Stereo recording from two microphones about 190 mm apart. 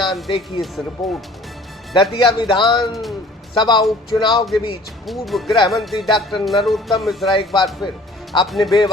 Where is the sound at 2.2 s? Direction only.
25° left (ahead or behind).